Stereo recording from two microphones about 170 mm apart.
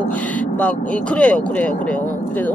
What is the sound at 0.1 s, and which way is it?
Speech, 10° left (ahead or behind).